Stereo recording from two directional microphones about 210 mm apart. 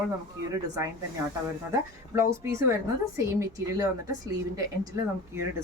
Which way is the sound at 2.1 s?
15° right (ahead or behind).